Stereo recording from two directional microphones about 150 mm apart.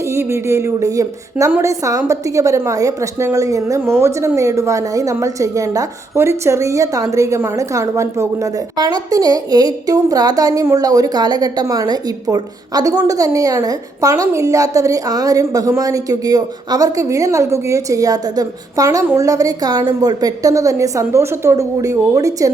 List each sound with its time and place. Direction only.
0.1 s a woman's voice: 15° right (ahead or behind)